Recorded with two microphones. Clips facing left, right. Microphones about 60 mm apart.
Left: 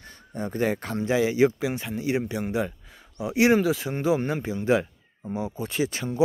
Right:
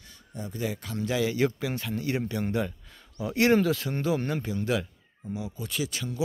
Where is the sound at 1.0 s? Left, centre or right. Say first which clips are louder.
Left 5 dB; left.